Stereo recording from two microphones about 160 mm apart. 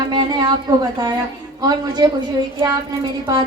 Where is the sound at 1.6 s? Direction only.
25° right (ahead or behind).